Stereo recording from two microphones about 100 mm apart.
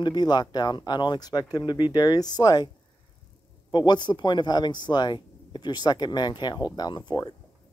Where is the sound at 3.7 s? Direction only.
45° left (ahead or behind).